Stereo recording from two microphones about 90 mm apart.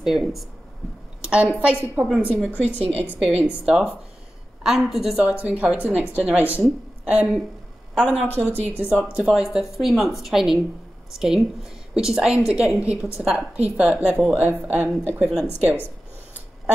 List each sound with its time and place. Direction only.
0.0 s a woman's voice: 5° right (ahead or behind)
5.4 s a woman's voice: 15° right (ahead or behind)
8.3 s a woman's voice: 20° left (ahead or behind)
8.7 s a woman's voice: 15° right (ahead or behind)
15.2 s a woman's voice: 5° right (ahead or behind)